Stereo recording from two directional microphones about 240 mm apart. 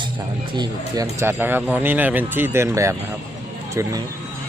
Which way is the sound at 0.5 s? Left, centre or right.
Centre.